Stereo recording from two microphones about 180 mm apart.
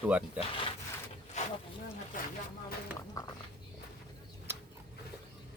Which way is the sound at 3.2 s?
20° left (ahead or behind).